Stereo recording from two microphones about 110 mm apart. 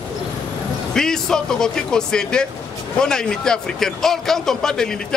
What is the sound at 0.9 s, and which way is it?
A man's voice, 5° left (ahead or behind).